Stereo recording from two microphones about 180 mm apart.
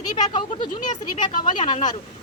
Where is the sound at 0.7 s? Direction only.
45° left (ahead or behind).